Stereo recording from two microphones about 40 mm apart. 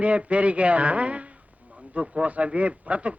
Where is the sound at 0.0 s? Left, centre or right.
Right.